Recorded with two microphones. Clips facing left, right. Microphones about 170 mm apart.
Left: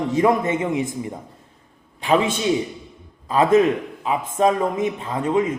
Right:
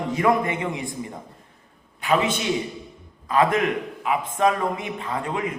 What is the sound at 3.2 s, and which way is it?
A man's voice, 25° left (ahead or behind).